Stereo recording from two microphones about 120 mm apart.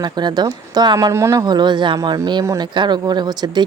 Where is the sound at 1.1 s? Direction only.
25° right (ahead or behind).